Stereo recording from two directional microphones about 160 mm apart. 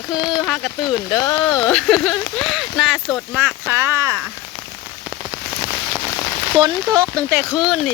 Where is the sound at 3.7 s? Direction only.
15° right (ahead or behind).